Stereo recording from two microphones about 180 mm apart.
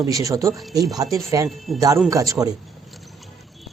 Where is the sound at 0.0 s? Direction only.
20° right (ahead or behind).